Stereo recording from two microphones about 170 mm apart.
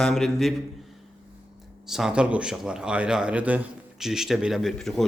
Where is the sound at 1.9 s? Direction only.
5° right (ahead or behind).